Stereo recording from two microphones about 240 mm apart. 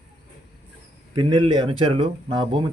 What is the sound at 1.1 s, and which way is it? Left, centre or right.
Speech, centre.